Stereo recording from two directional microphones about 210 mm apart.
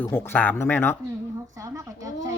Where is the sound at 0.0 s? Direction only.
10° left (ahead or behind).